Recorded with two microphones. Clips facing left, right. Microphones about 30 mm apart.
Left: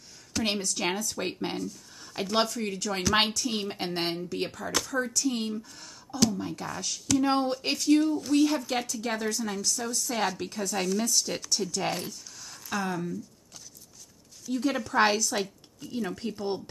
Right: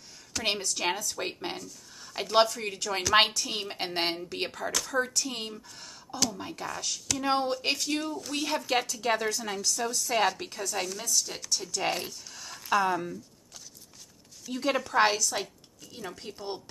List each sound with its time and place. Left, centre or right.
0.4 s speech: centre
2.3 s speech: centre
6.7 s speech: centre
9.0 s speech: right
10.6 s speech: centre
11.1 s speech: centre
11.4 s speech: centre
12.6 s speech: right
14.4 s speech: centre
14.8 s speech: centre